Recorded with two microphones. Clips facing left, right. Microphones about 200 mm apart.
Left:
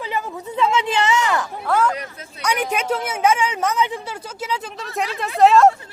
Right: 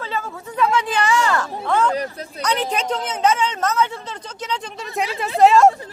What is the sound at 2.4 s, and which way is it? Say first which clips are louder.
Speech: even; 10° left (ahead or behind).